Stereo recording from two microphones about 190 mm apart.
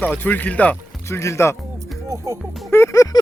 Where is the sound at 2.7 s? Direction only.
15° left (ahead or behind).